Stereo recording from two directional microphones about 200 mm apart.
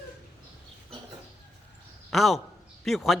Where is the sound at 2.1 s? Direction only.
Centre (ahead or behind).